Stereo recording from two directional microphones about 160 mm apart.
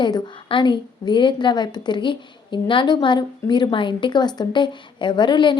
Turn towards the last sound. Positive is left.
turn(degrees=30)  # may be behind; listen again after turning